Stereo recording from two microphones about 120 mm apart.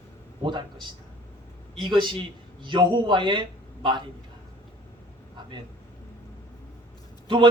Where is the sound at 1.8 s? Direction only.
40° right (ahead or behind).